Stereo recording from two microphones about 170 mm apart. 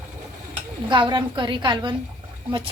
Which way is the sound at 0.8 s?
25° right (ahead or behind).